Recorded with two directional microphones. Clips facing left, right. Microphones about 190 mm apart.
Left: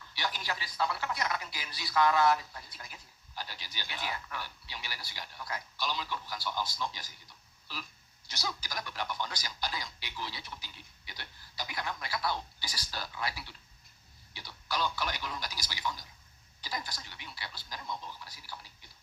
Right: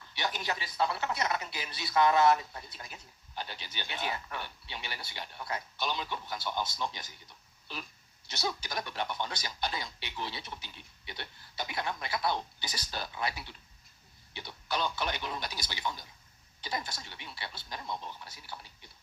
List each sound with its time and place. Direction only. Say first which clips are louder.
0.1 s speech: right 2 dB; 20° right (ahead or behind)
8.3 s speech: right 4 dB; 25° right (ahead or behind)